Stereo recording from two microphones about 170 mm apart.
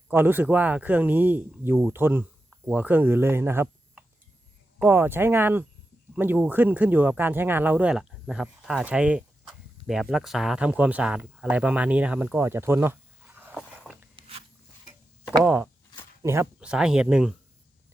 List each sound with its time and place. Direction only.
0.1 s speech: 10° right (ahead or behind)
15.4 s speech: 10° right (ahead or behind)
16.6 s speech: 5° right (ahead or behind)